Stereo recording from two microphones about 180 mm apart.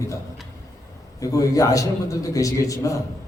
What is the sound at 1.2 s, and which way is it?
A man's voice, 20° left (ahead or behind).